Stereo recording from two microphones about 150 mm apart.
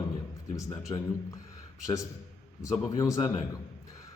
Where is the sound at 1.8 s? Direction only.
20° left (ahead or behind).